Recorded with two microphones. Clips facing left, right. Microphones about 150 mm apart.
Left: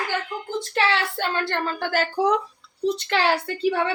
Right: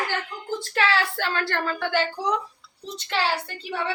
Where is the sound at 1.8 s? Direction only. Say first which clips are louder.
Left 4 dB; 40° left (ahead or behind).